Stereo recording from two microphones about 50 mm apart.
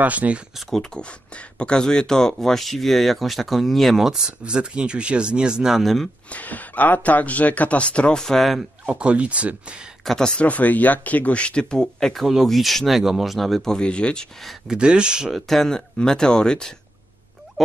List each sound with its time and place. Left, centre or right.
0.0 s speech: right
0.6 s speech: centre
0.9 s speech: left; by 4.1 s centre
4.1 s speech: centre
5.8 s speech: centre
6.3 s speech: left
8.2 s speech: centre
8.9 s speech: right
10.0 s speech: centre
10.4 s speech: left
12.1 s speech: centre; by 14.2 s left
14.7 s speech: centre
15.3 s speech: centre
17.6 s oink: centre